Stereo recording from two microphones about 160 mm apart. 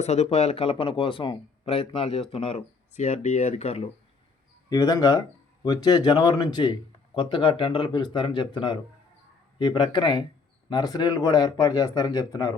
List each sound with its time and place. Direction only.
0.0 s speech: 40° left (ahead or behind)
4.7 s speech: 20° left (ahead or behind)